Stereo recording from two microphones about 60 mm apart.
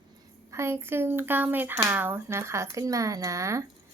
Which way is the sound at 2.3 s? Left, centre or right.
Right.